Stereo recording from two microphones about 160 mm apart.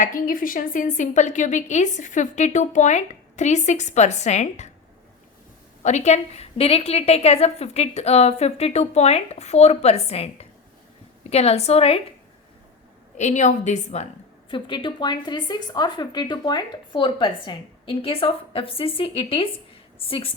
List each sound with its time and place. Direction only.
0.0 s a woman's voice: 60° left (ahead or behind)
5.8 s speech: 45° left (ahead or behind)
13.1 s a woman's voice: 45° left (ahead or behind)
14.5 s speech: 30° left (ahead or behind)